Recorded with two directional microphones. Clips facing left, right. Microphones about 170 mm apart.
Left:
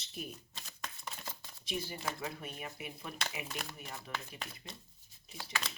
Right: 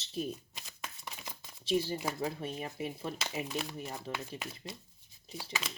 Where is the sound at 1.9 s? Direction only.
30° right (ahead or behind).